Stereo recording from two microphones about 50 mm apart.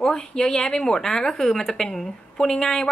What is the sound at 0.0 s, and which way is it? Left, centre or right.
Speech, centre.